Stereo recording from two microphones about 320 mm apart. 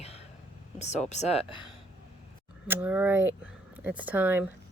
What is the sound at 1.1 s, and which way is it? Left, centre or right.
Speech, centre.